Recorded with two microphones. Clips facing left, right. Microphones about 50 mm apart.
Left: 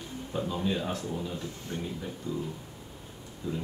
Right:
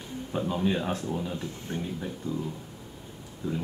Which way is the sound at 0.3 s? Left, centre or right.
Centre.